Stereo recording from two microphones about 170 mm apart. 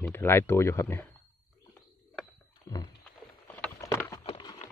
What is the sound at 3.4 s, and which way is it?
Rowboat, 10° left (ahead or behind).